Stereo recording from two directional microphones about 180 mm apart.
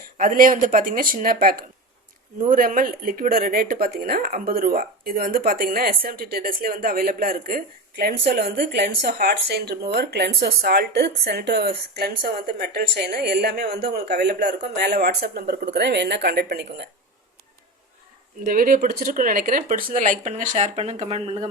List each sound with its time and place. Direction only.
0.2 s speech: 50° right (ahead or behind); by 16.8 s 65° right (ahead or behind)
18.4 s speech: 50° right (ahead or behind); by 21.3 s 35° right (ahead or behind)